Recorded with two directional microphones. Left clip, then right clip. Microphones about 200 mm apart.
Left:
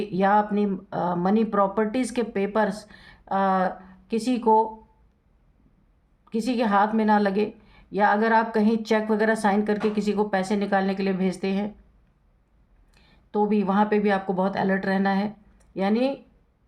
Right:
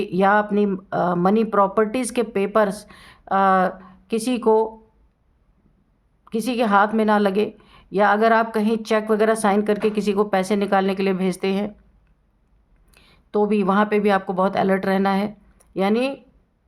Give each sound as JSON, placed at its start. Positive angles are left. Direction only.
{"t": 0.0, "sound": "a woman's voice", "side_deg": -35}
{"t": 6.2, "sound": "a woman's voice", "side_deg": -35}
{"t": 12.9, "sound": "speech", "side_deg": -40}